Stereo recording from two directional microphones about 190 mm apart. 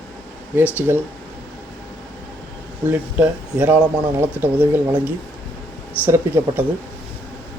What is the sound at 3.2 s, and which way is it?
Speech, 5° right (ahead or behind).